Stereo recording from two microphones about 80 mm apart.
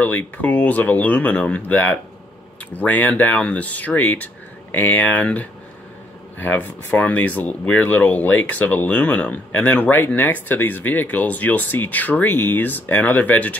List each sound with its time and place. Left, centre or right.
0.0 s speech: left